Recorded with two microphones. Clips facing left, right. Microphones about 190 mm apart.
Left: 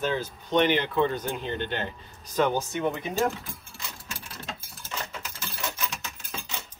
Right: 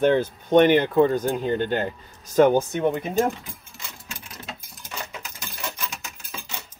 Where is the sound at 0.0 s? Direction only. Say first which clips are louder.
Right 9 dB; 55° right (ahead or behind).